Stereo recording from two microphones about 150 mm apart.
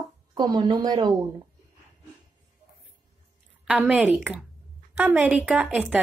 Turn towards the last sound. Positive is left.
turn(degrees=-5)  # may be behind; listen again after turning